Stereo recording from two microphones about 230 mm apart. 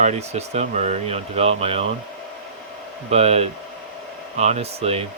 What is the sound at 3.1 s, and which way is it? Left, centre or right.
Speech, right.